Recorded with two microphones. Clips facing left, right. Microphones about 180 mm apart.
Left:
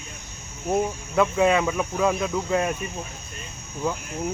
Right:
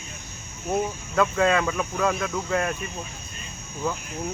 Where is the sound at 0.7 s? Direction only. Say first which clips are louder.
Left 2 dB; 15° left (ahead or behind).